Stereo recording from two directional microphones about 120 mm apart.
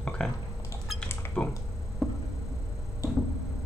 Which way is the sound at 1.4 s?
5° left (ahead or behind).